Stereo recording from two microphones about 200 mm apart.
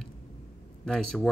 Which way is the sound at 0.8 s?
5° left (ahead or behind).